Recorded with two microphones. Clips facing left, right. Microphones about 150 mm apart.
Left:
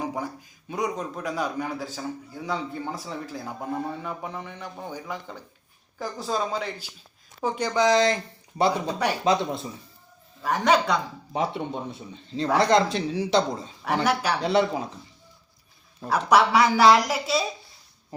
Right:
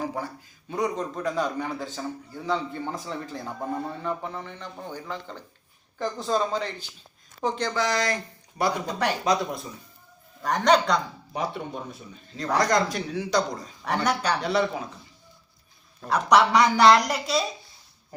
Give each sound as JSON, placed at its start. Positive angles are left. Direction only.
{"t": 0.7, "sound": "a man's voice", "side_deg": 10}
{"t": 10.4, "sound": "a man's voice", "side_deg": 5}
{"t": 11.3, "sound": "speech", "side_deg": 25}
{"t": 13.8, "sound": "a man's voice", "side_deg": 5}
{"t": 14.4, "sound": "speech", "side_deg": 30}
{"t": 16.0, "sound": "speech", "side_deg": 5}